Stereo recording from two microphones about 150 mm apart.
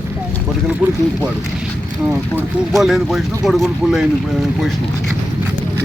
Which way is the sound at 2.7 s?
Centre (ahead or behind).